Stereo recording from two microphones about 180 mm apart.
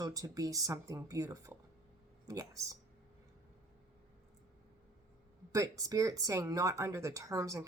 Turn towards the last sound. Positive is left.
turn(degrees=-15)  # may be behind; listen again after turning